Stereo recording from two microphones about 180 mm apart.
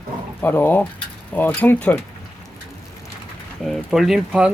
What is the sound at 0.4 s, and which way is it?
Speech, 10° left (ahead or behind).